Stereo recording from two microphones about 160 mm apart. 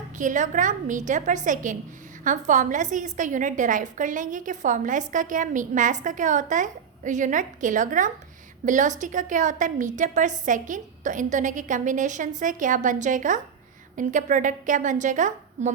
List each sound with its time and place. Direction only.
0.2 s a woman's voice: 50° right (ahead or behind)